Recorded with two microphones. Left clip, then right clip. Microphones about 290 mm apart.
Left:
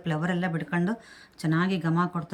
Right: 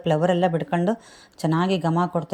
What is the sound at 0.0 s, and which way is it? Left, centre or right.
A woman's voice, centre.